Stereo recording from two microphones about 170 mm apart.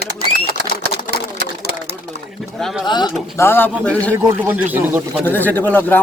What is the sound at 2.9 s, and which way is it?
Speech, 25° left (ahead or behind).